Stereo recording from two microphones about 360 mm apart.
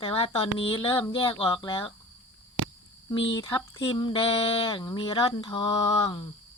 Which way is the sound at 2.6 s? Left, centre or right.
Right.